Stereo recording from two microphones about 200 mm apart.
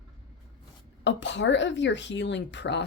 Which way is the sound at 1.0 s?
65° left (ahead or behind).